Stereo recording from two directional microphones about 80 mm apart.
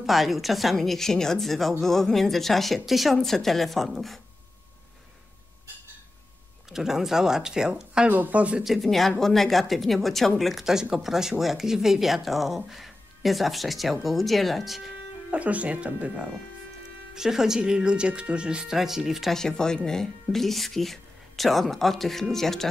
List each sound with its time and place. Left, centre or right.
0.0 s speech: centre
6.7 s speech: centre
8.6 s speech: centre
15.3 s speech: centre
19.3 s speech: centre